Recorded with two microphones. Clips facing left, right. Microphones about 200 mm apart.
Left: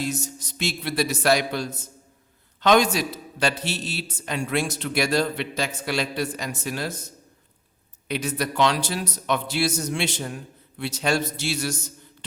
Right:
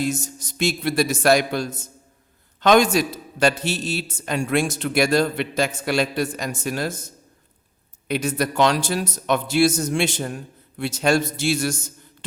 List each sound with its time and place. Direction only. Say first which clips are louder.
0.0 s a man's voice: right 4 dB; 50° right (ahead or behind)
8.0 s a man's voice: right 4 dB; 45° right (ahead or behind)